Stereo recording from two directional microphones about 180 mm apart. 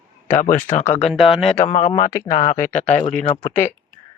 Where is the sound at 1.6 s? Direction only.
35° left (ahead or behind).